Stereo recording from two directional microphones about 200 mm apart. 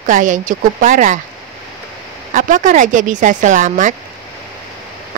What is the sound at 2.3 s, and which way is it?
Speech, 40° right (ahead or behind).